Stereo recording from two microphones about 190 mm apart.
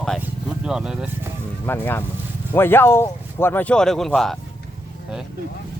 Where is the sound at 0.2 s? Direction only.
5° right (ahead or behind).